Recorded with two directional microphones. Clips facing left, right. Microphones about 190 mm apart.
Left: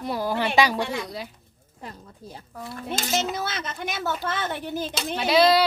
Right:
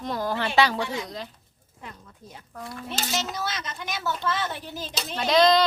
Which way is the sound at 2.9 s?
50° left (ahead or behind).